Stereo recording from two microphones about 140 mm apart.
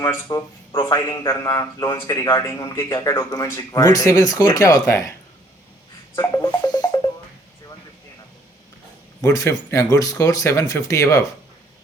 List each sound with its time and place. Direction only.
0.0 s a man's voice: 25° left (ahead or behind)
6.1 s music: 25° left (ahead or behind)
9.2 s a man's voice: 25° left (ahead or behind)